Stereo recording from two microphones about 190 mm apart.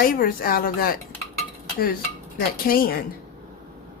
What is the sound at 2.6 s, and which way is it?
Speech, 50° left (ahead or behind).